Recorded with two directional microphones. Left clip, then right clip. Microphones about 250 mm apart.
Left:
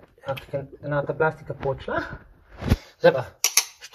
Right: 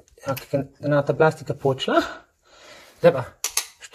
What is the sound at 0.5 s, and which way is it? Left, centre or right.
Speech, right.